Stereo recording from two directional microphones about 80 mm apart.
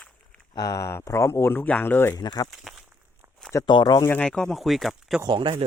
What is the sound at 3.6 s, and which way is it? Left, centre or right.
Speech, left.